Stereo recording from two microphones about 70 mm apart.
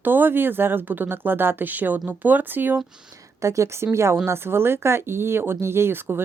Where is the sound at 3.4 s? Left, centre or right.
Right.